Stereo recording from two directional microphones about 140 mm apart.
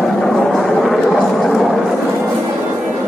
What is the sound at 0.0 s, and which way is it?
Vehicle, centre (ahead or behind).